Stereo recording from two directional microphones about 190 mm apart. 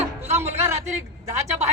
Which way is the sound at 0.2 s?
10° right (ahead or behind).